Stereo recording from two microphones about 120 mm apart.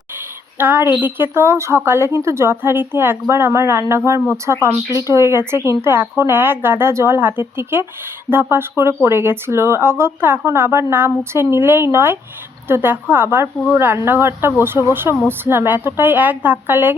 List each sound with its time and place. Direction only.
0.6 s a woman's voice: 15° right (ahead or behind)